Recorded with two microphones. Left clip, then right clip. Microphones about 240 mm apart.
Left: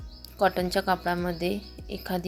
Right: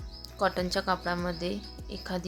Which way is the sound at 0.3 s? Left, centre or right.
Centre.